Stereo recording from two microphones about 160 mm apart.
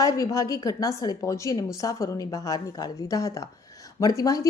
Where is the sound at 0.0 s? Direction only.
20° left (ahead or behind).